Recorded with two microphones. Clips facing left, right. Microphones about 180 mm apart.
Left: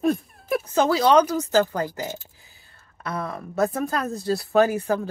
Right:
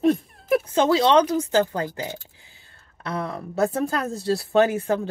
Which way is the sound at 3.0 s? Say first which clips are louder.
Right 1 dB; 25° right (ahead or behind).